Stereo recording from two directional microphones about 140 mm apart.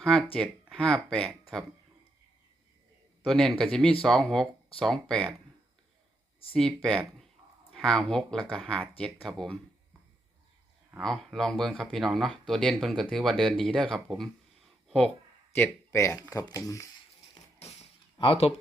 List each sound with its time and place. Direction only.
0.0 s speech: 5° left (ahead or behind)
3.2 s speech: 5° left (ahead or behind)
6.5 s speech: 5° left (ahead or behind)
11.0 s speech: centre (ahead or behind)
14.8 s a sound: 5° left (ahead or behind)
15.5 s speech: 15° left (ahead or behind)
18.2 s speech: 40° left (ahead or behind)